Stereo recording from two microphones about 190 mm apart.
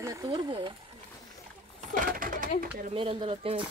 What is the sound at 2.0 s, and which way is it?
Speech, 45° right (ahead or behind).